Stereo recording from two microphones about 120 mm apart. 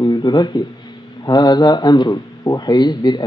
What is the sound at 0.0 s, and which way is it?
Speech, 35° left (ahead or behind).